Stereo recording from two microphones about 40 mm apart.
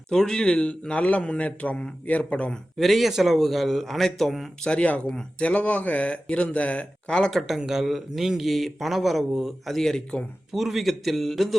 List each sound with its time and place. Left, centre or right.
0.1 s speech: centre
0.5 s speech: left
2.7 s speech: centre
4.6 s speech: left
7.1 s speech: centre
7.3 s speech: centre
7.6 s speech: centre
9.6 s speech: centre
10.5 s speech: centre